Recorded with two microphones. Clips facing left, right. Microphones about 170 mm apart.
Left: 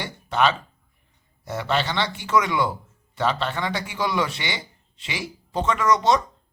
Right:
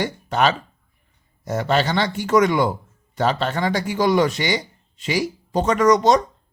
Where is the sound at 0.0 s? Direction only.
45° right (ahead or behind).